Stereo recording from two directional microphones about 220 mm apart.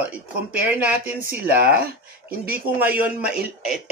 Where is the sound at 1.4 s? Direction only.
45° right (ahead or behind).